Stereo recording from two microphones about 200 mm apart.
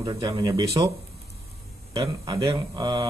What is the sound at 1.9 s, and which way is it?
Speech, 25° right (ahead or behind).